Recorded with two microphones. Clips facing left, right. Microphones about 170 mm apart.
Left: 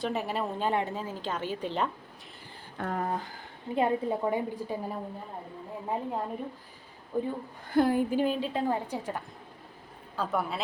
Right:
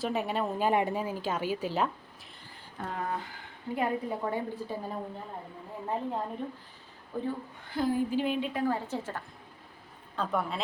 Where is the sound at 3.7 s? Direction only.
20° left (ahead or behind).